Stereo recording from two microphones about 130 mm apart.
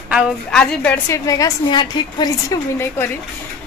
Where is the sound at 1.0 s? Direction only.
25° left (ahead or behind).